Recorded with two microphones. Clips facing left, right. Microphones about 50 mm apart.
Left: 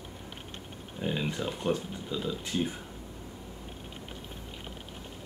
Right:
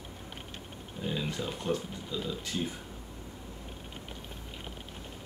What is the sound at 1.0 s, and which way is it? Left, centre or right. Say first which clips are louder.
Speech: left 2 dB; left.